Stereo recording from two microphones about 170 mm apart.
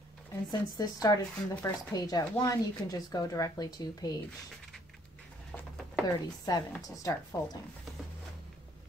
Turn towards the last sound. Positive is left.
turn(degrees=20)  # may be behind; listen again after turning